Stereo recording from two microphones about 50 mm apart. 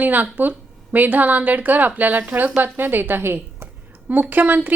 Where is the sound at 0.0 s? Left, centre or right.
Right.